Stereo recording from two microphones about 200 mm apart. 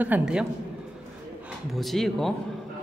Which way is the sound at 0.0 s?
5° right (ahead or behind).